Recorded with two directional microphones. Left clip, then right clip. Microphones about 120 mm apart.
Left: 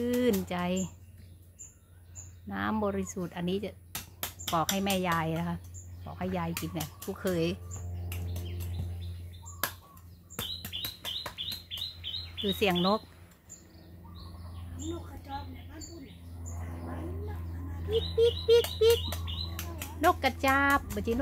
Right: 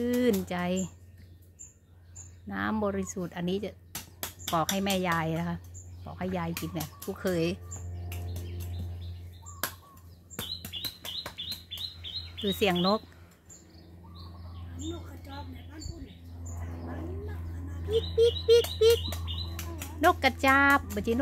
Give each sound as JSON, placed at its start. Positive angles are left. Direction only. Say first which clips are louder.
{"t": 0.0, "sound": "speech", "louder": "right 1 dB", "side_deg": -10}
{"t": 2.4, "sound": "speech", "louder": "right 1 dB", "side_deg": -15}
{"t": 4.7, "sound": "speech", "louder": "right 1 dB", "side_deg": -15}
{"t": 8.1, "sound": "bird", "louder": "even", "side_deg": 0}
{"t": 9.6, "sound": "a sound", "louder": "left 1 dB", "side_deg": 0}
{"t": 10.3, "sound": "chirp", "louder": "even", "side_deg": 0}
{"t": 12.4, "sound": "speech", "louder": "right 1 dB", "side_deg": -15}
{"t": 17.8, "sound": "bird", "louder": "right 2 dB", "side_deg": -15}
{"t": 18.5, "sound": "speech", "louder": "right 1 dB", "side_deg": -15}
{"t": 19.0, "sound": "bird", "louder": "even", "side_deg": 0}
{"t": 20.0, "sound": "speech", "louder": "right 2 dB", "side_deg": -25}